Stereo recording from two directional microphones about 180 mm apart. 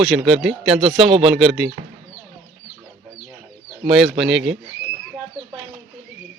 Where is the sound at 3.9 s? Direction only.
Centre (ahead or behind).